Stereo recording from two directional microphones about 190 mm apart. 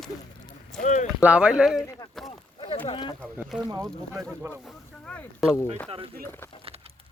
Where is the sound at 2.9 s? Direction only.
25° left (ahead or behind).